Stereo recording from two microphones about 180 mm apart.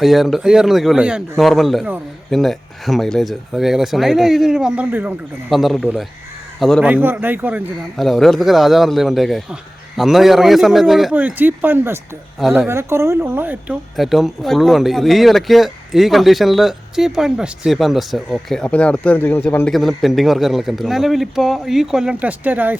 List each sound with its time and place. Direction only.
0.0 s speech: centre (ahead or behind)
6.8 s speech: 10° right (ahead or behind)
7.9 s speech: centre (ahead or behind)
12.4 s speech: centre (ahead or behind)
12.6 s speech: 15° right (ahead or behind); by 19.7 s 10° left (ahead or behind)
19.7 s speech: centre (ahead or behind)